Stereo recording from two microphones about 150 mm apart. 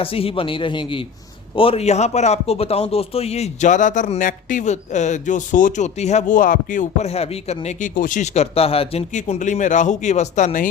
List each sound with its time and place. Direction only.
0.0 s a man's voice: 40° left (ahead or behind); by 10.7 s 60° left (ahead or behind)